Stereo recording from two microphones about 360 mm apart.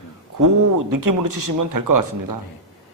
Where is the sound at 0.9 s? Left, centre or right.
Right.